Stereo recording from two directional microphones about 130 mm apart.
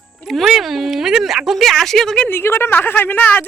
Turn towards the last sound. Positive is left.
turn(degrees=15)  # may be behind; listen again after turning